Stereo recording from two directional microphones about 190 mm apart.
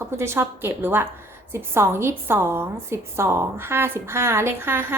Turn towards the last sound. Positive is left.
turn(degrees=-10)  # may be behind; listen again after turning